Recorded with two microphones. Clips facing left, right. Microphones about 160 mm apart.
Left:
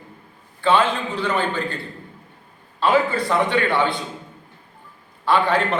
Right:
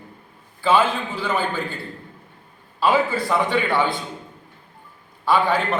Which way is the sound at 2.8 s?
Centre (ahead or behind).